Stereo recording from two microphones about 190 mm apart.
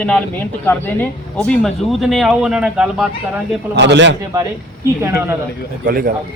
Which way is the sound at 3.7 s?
65° right (ahead or behind).